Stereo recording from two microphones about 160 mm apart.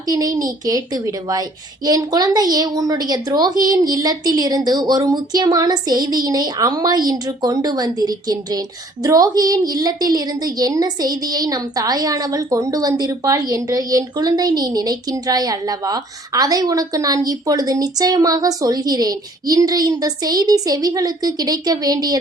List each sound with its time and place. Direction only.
0.1 s a woman's voice: 20° right (ahead or behind)